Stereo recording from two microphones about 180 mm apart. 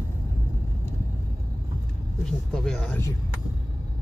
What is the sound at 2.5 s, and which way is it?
Speech, 5° left (ahead or behind).